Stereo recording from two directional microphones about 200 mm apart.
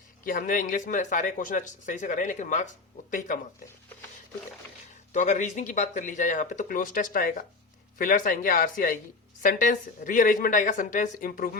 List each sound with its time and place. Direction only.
0.3 s speech: 45° left (ahead or behind)
5.1 s speech: 40° left (ahead or behind)